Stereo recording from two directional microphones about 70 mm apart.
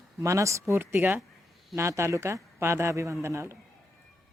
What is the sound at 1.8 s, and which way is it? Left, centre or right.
A man's voice, right.